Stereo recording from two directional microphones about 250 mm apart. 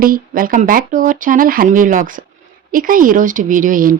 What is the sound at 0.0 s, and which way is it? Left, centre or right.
Speech, right.